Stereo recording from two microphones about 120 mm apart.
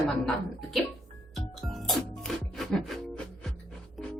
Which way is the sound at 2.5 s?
Centre (ahead or behind).